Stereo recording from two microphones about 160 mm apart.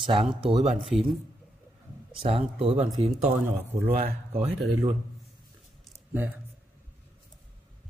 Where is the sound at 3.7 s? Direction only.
60° right (ahead or behind).